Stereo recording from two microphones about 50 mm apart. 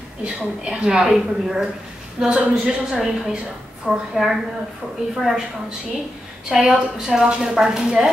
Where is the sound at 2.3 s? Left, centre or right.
Right.